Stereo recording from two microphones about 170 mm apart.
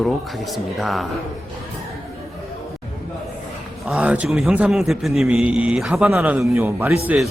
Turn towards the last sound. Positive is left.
turn(degrees=-10)  # may be behind; listen again after turning